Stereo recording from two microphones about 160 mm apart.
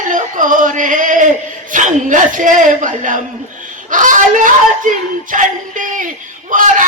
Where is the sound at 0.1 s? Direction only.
55° right (ahead or behind).